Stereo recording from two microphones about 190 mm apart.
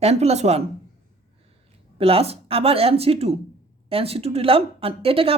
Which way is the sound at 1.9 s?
30° right (ahead or behind).